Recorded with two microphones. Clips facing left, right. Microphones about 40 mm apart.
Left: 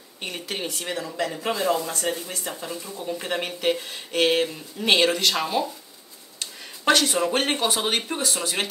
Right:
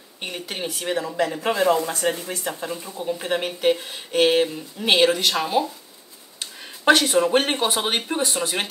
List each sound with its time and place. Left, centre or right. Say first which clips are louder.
0.2 s speech: right 1 dB; centre
0.9 s a man's voice: right 6 dB; centre
6.9 s speech: right 4 dB; centre